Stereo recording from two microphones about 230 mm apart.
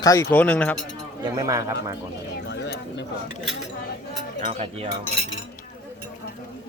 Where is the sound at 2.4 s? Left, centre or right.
Left.